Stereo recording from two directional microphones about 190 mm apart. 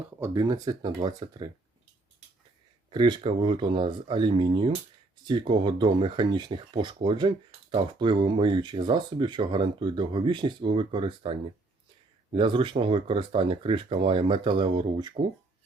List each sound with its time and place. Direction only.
0.2 s speech: 20° right (ahead or behind)
2.9 s speech: 25° right (ahead or behind)